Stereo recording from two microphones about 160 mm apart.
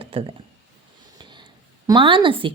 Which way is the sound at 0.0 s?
35° right (ahead or behind).